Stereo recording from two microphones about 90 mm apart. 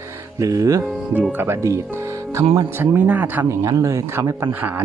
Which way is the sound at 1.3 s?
25° right (ahead or behind).